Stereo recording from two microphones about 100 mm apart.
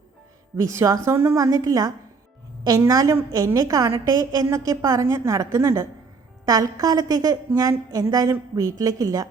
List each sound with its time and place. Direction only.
0.5 s a woman's voice: 30° right (ahead or behind)